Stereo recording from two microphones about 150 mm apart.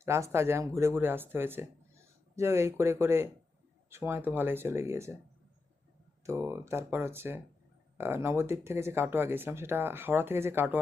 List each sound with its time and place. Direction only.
0.0 s speech: 20° right (ahead or behind)
6.2 s speech: 20° right (ahead or behind)